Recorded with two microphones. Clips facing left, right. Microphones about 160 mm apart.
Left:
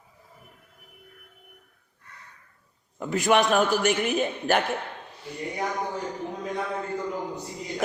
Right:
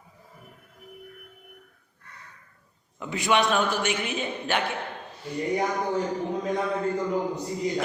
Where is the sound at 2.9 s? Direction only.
45° left (ahead or behind).